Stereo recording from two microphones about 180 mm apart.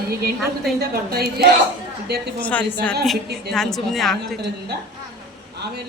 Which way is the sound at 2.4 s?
10° left (ahead or behind).